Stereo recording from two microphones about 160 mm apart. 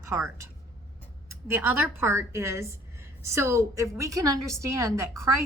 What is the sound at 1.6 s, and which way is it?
A woman's voice, 15° right (ahead or behind).